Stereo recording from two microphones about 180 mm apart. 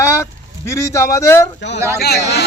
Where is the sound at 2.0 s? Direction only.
65° left (ahead or behind).